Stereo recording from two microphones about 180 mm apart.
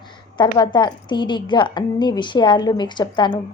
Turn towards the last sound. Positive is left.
turn(degrees=25)  # may be behind; listen again after turning